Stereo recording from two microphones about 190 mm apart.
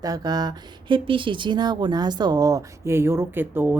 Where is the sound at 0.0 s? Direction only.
20° right (ahead or behind).